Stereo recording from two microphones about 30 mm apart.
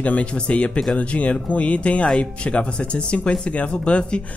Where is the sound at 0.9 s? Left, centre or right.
Left.